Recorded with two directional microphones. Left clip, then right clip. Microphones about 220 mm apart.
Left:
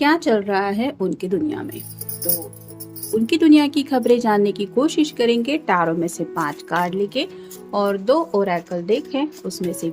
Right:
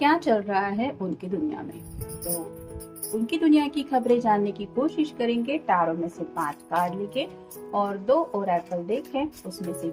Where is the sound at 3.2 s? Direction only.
35° left (ahead or behind).